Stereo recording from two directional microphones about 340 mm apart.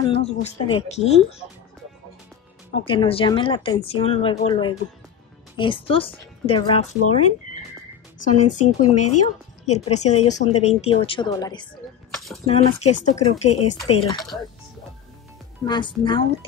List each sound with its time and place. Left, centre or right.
0.0 s speech: centre
2.9 s speech: centre
8.2 s speech: left
12.1 s a sound: centre
12.4 s speech: centre
15.6 s speech: centre